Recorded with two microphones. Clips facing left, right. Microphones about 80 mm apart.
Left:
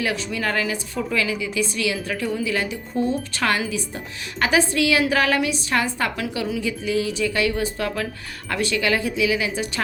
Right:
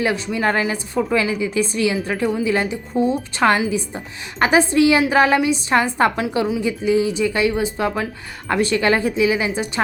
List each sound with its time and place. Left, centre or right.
0.0 s a woman's voice: right